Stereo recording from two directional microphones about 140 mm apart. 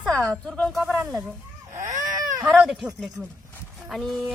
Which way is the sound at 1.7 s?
65° right (ahead or behind).